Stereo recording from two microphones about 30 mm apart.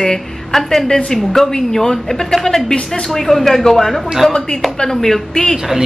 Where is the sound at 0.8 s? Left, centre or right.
Left.